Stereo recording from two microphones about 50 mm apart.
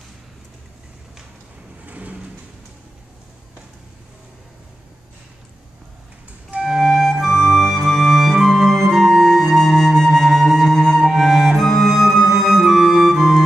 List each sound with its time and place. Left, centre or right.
1.9 s sliding door: right
6.6 s flute: centre
11.1 s flute: centre
11.5 s flute: centre